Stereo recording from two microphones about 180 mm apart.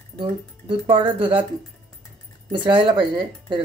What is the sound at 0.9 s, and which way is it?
Speech, 25° right (ahead or behind).